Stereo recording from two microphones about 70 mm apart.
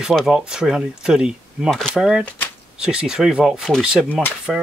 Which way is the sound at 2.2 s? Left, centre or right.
Left.